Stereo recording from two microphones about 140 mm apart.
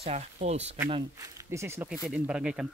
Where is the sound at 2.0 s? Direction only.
10° right (ahead or behind).